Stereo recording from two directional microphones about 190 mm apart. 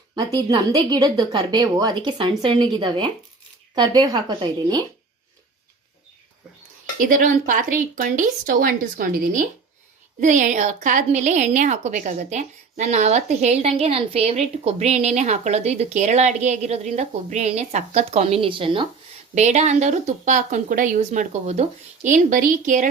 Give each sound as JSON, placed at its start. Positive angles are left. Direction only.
{"t": 0.5, "sound": "a woman's voice", "side_deg": -20}
{"t": 7.0, "sound": "a woman's voice", "side_deg": -45}